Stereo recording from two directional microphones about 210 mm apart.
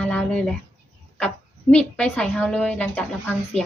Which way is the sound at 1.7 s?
5° left (ahead or behind).